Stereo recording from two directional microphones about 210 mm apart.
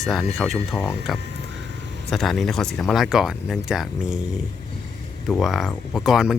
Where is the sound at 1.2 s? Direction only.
55° right (ahead or behind).